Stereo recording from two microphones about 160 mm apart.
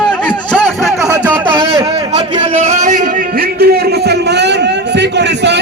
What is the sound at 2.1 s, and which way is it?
A man's voice, 45° right (ahead or behind).